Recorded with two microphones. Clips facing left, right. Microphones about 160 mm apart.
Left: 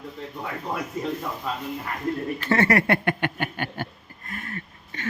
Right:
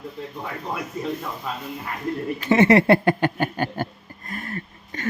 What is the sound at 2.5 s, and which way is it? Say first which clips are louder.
Speech: right 6 dB; 20° right (ahead or behind).